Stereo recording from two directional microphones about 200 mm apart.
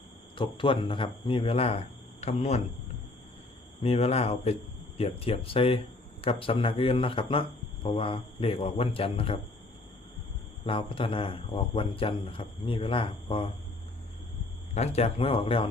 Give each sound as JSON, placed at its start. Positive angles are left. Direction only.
{"t": 0.3, "sound": "speech", "side_deg": 25}
{"t": 3.8, "sound": "speech", "side_deg": 30}
{"t": 10.7, "sound": "speech", "side_deg": 25}
{"t": 14.8, "sound": "speech", "side_deg": 30}